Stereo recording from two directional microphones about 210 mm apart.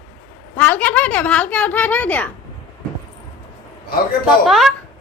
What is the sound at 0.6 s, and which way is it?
A woman's voice, 10° left (ahead or behind).